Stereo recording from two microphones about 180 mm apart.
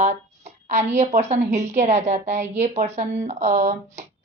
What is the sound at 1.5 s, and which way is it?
A woman's voice, 40° right (ahead or behind).